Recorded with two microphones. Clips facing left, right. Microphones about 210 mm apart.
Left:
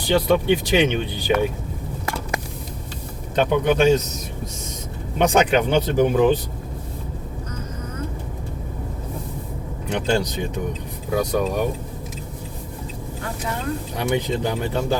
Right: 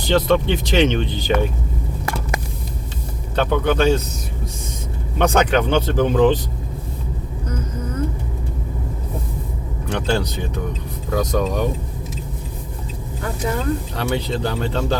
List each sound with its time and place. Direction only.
0.1 s speech: 10° left (ahead or behind)
3.3 s speech: 15° left (ahead or behind)
5.1 s speech: 15° left (ahead or behind)
9.9 s speech: 15° left (ahead or behind)
13.9 s speech: 15° left (ahead or behind)